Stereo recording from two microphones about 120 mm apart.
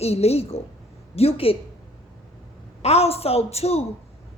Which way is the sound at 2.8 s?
60° left (ahead or behind).